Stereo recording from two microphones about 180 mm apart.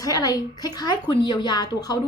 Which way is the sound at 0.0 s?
20° left (ahead or behind).